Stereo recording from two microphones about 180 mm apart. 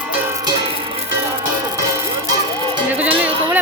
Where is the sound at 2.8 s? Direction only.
10° right (ahead or behind).